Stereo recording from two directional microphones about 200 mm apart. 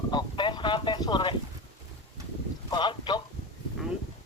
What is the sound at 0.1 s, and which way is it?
Speech, 20° left (ahead or behind).